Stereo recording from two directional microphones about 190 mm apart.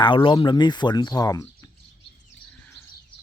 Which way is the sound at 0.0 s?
25° left (ahead or behind).